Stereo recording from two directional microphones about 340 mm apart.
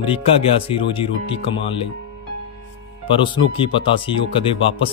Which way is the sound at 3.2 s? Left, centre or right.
Centre.